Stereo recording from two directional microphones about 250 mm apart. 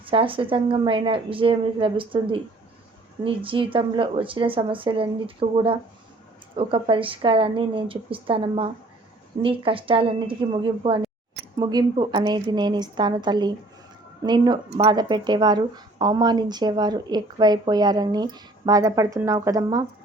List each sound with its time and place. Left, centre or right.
0.0 s speech: right